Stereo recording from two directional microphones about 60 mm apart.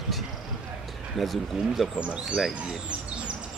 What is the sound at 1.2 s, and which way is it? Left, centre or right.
Speech, centre.